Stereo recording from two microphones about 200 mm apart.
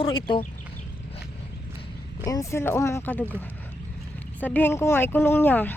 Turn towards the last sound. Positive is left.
turn(degrees=10)  # may be behind; listen again after turning